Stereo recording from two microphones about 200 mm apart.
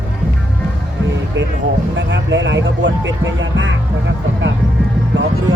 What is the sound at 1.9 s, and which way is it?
Speech, 65° right (ahead or behind).